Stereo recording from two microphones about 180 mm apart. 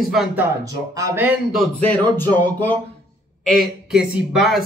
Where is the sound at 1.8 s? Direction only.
10° left (ahead or behind).